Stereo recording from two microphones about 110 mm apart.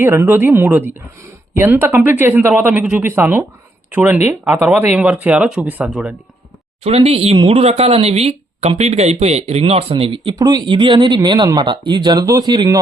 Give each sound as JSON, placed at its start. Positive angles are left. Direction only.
{"t": 0.0, "sound": "speech", "side_deg": -20}
{"t": 6.8, "sound": "speech", "side_deg": -70}
{"t": 9.9, "sound": "speech", "side_deg": -50}
{"t": 10.3, "sound": "speech", "side_deg": -35}